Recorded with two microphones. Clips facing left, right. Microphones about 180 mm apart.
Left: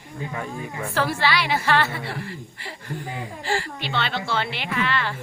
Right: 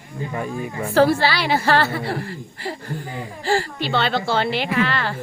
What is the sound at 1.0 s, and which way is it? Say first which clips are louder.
A woman's voice: right 7 dB; 35° right (ahead or behind).